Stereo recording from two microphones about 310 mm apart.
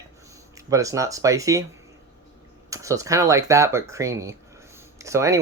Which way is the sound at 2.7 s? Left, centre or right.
Centre.